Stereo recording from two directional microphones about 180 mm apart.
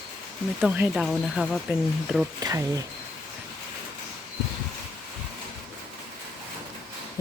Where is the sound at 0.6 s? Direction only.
5° right (ahead or behind).